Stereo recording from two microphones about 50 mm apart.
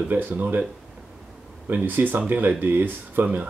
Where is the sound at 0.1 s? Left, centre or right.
Right.